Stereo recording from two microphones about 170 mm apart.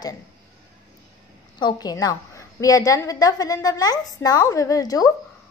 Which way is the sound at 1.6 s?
25° left (ahead or behind).